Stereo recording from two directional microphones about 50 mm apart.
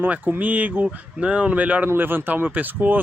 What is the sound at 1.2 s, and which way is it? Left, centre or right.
Speech, right.